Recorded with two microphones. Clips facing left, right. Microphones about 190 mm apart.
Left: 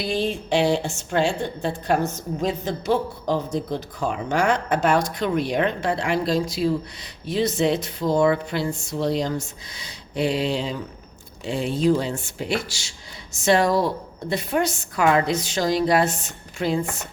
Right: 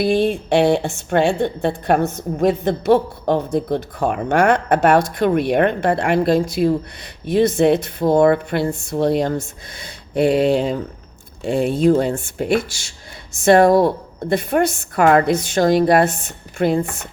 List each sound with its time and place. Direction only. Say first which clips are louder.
0.0 s a woman's voice: right 8 dB; 55° right (ahead or behind)